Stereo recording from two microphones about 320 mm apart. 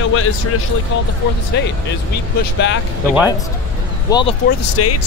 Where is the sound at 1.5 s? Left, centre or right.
Left.